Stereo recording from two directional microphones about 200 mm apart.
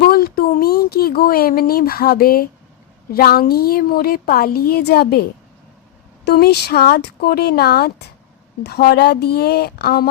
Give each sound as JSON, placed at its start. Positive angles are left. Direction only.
{"t": 0.0, "sound": "a sound", "side_deg": 50}
{"t": 3.1, "sound": "a woman's voice", "side_deg": 50}
{"t": 6.2, "sound": "a woman's voice", "side_deg": 55}